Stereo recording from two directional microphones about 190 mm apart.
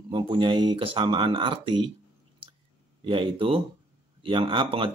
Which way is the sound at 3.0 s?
25° right (ahead or behind).